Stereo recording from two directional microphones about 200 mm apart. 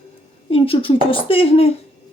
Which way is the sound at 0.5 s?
30° left (ahead or behind).